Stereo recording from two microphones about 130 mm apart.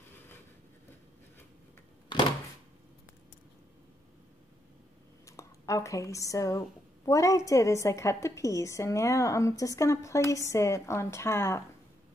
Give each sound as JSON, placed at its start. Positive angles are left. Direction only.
{"t": 5.2, "sound": "a woman's voice", "side_deg": 25}